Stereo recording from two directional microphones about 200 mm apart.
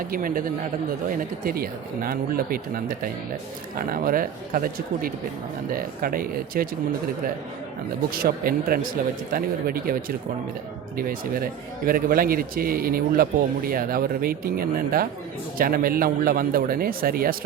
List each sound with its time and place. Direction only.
0.1 s speech: 45° right (ahead or behind)
8.1 s speech: 45° right (ahead or behind)